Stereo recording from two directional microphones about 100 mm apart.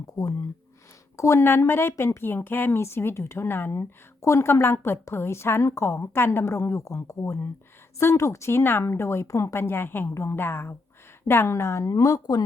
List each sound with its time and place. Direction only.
0.2 s speech: 35° left (ahead or behind)